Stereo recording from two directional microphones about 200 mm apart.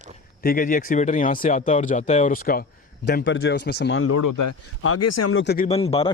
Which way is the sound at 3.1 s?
60° left (ahead or behind).